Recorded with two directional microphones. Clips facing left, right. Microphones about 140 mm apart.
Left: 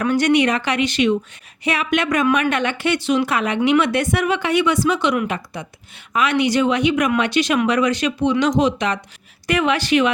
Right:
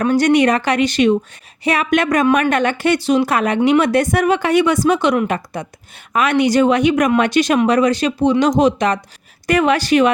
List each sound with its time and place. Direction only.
0.0 s speech: 35° right (ahead or behind)